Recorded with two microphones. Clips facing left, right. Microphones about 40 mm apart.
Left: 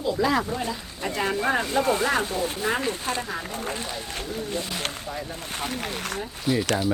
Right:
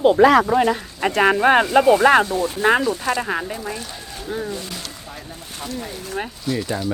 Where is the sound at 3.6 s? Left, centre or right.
Left.